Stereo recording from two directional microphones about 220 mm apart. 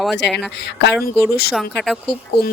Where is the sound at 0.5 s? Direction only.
50° left (ahead or behind).